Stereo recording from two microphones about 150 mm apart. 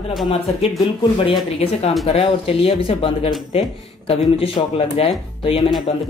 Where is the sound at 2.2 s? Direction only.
40° left (ahead or behind).